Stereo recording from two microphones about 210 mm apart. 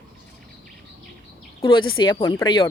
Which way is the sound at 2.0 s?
20° left (ahead or behind).